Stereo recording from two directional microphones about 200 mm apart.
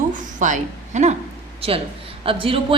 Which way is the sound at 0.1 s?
40° right (ahead or behind).